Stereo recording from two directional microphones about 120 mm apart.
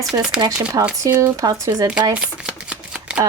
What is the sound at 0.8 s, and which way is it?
Speech, 35° right (ahead or behind).